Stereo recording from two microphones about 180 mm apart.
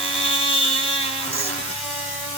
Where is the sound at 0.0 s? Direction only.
30° left (ahead or behind).